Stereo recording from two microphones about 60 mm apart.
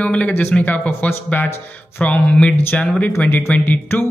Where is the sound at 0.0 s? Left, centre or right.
Centre.